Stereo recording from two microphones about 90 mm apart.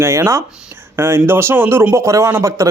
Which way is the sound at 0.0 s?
35° right (ahead or behind).